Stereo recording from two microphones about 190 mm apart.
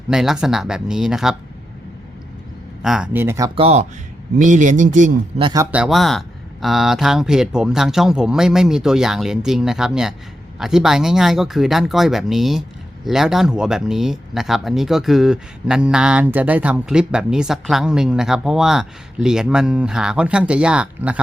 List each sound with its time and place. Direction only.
0.1 s speech: 5° right (ahead or behind)
2.8 s speech: 5° right (ahead or behind)
3.5 s speech: 30° right (ahead or behind)
5.4 s speech: 25° right (ahead or behind)
5.7 s speech: 5° right (ahead or behind)